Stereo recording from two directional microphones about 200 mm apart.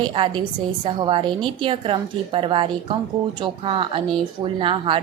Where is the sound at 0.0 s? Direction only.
25° right (ahead or behind).